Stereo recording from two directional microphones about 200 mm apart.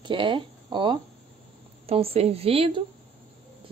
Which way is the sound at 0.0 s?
25° right (ahead or behind).